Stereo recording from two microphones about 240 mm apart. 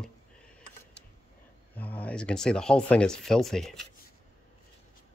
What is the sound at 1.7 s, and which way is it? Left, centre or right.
Speech, centre.